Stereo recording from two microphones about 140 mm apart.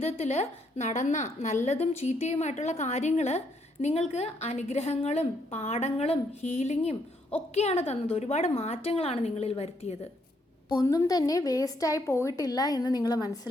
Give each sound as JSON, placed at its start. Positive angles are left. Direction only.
{"t": 0.0, "sound": "a woman's voice", "side_deg": 50}
{"t": 10.7, "sound": "a woman's voice", "side_deg": 25}